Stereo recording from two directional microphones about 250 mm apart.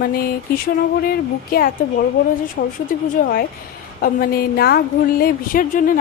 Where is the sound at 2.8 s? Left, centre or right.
Left.